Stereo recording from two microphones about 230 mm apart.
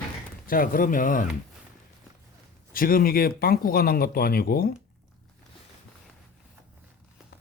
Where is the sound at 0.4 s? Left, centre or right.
Left.